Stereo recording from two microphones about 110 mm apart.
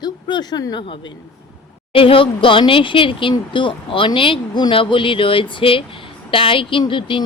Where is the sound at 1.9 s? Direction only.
55° left (ahead or behind).